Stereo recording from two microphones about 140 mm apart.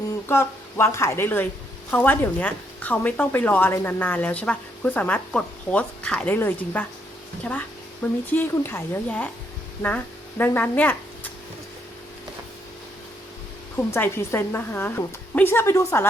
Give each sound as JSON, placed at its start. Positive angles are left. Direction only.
{"t": 0.3, "sound": "speech", "side_deg": 20}
{"t": 8.3, "sound": "speech", "side_deg": 15}
{"t": 13.7, "sound": "speech", "side_deg": 15}